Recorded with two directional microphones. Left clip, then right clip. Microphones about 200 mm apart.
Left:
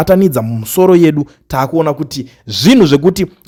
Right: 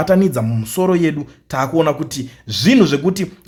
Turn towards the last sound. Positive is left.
turn(degrees=45)  # may be behind; listen again after turning